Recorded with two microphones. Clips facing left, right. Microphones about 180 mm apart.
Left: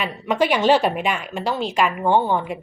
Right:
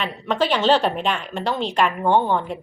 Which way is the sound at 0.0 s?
10° left (ahead or behind).